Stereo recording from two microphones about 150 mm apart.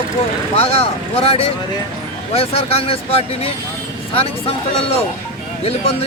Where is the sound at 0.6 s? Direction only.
40° left (ahead or behind).